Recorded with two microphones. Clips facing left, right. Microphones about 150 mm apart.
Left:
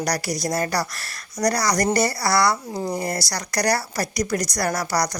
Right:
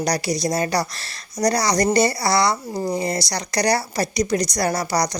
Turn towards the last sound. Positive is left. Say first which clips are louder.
# right 2 dB
turn(degrees=-20)  # may be behind; listen again after turning